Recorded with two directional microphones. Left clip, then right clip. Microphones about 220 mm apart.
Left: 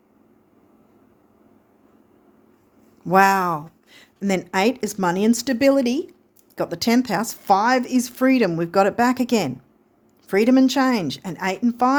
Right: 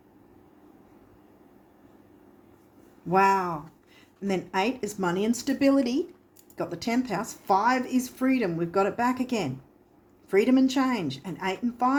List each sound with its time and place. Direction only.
3.1 s speech: 50° left (ahead or behind)